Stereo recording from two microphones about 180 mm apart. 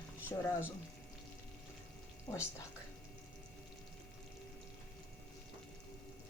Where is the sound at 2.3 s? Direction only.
20° left (ahead or behind).